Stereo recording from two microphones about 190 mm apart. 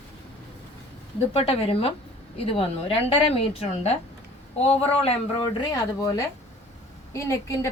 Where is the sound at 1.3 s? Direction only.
30° left (ahead or behind).